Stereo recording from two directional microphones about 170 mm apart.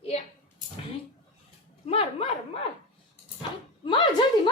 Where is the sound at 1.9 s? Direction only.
35° left (ahead or behind).